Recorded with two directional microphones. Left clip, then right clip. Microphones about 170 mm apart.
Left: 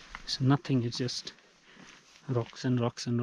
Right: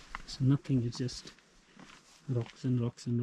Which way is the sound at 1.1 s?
Centre (ahead or behind).